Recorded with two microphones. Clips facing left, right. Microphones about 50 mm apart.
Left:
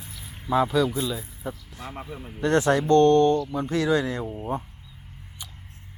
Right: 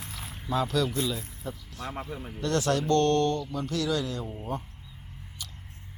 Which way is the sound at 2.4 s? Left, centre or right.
Left.